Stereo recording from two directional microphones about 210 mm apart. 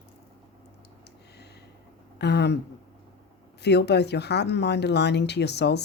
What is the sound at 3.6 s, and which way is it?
Speech, 50° left (ahead or behind).